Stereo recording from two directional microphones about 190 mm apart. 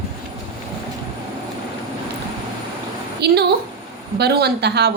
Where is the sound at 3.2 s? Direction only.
60° right (ahead or behind).